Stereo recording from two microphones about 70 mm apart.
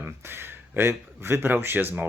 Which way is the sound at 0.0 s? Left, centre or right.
Right.